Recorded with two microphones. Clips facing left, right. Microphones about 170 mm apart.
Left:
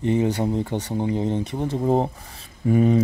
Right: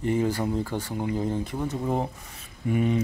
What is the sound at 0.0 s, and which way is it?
Speech, 20° left (ahead or behind).